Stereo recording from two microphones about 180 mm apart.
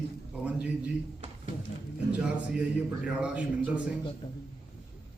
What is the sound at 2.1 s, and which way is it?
A man's voice, 5° right (ahead or behind).